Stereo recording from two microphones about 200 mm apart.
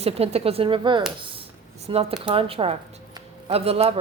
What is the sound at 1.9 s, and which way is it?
Speech, 25° right (ahead or behind).